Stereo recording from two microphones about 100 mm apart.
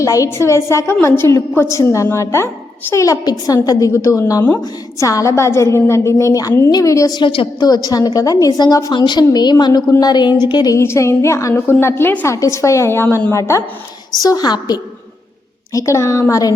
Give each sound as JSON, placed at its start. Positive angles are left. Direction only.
{"t": 0.0, "sound": "a woman's voice", "side_deg": 30}
{"t": 7.2, "sound": "a woman's voice", "side_deg": 60}
{"t": 7.6, "sound": "a woman's voice", "side_deg": 40}
{"t": 10.8, "sound": "a woman's voice", "side_deg": 30}
{"t": 15.7, "sound": "a woman's voice", "side_deg": 30}